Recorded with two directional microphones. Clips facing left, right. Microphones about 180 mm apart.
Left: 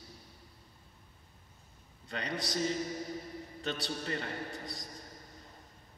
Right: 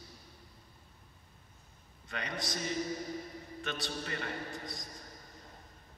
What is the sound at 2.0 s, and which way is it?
Speech, 35° left (ahead or behind).